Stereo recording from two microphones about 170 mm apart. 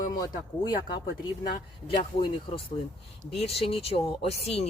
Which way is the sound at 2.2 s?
30° left (ahead or behind).